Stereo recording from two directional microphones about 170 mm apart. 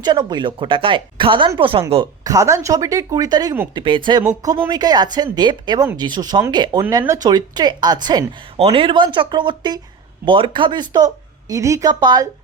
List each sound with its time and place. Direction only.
0.0 s speech: 25° right (ahead or behind)
2.2 s speech: 20° right (ahead or behind)